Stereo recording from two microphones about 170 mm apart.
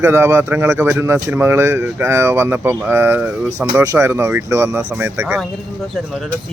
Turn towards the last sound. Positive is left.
turn(degrees=0)  # may be behind; listen again after turning